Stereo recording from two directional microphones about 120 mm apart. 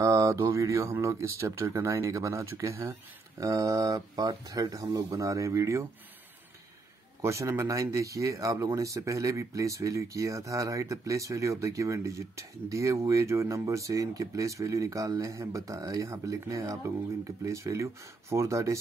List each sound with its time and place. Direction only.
0.0 s mantra: 25° right (ahead or behind)
0.9 s speech: 25° right (ahead or behind)
7.2 s speech: 25° right (ahead or behind)